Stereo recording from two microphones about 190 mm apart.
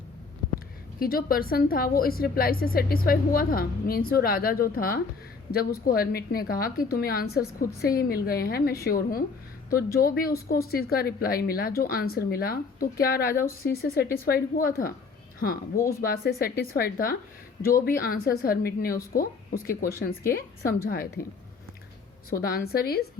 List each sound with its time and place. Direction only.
0.9 s speech: 50° left (ahead or behind)
22.3 s speech: 50° left (ahead or behind)